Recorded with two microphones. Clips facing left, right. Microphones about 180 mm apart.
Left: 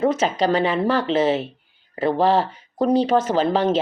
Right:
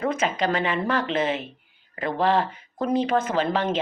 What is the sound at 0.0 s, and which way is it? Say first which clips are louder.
A woman's voice: left 5 dB; 40° left (ahead or behind).